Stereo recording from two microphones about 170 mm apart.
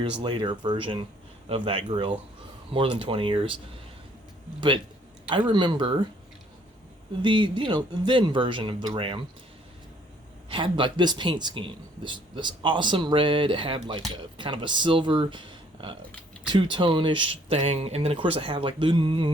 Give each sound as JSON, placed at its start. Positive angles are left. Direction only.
{"t": 0.0, "sound": "speech", "side_deg": -30}
{"t": 5.5, "sound": "speech", "side_deg": -25}
{"t": 7.2, "sound": "speech", "side_deg": -25}
{"t": 10.5, "sound": "speech", "side_deg": -30}